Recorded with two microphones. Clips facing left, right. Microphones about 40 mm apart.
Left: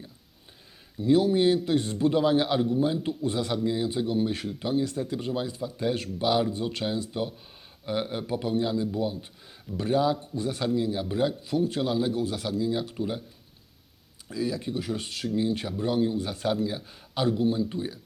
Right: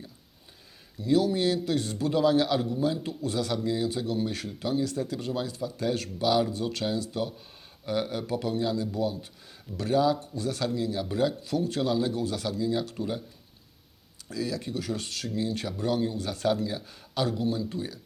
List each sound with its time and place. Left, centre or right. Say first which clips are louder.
0.9 s speech: left 3 dB; left
14.3 s speech: left 2 dB; centre